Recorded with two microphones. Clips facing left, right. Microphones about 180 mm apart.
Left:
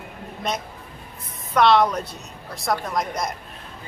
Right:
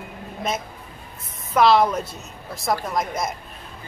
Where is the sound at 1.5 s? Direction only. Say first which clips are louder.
Right 1 dB; centre (ahead or behind).